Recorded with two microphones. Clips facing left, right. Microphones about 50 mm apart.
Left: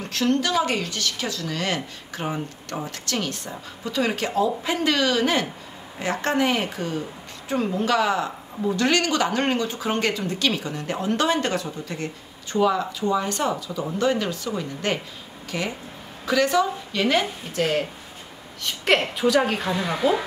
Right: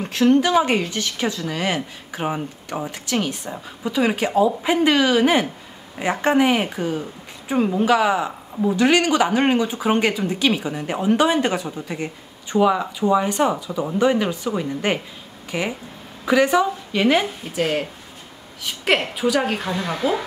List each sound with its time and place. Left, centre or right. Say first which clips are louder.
0.0 s a woman's voice: right 6 dB; centre